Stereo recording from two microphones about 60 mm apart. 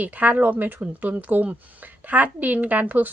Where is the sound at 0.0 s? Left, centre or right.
Right.